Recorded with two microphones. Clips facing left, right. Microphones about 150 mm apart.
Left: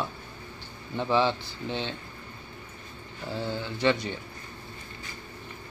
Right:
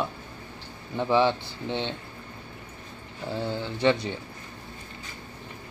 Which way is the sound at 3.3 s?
20° right (ahead or behind).